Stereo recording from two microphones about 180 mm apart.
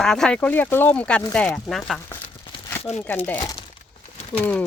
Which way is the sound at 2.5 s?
30° left (ahead or behind).